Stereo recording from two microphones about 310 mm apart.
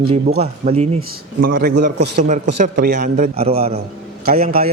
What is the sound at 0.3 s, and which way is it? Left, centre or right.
A man's voice, right.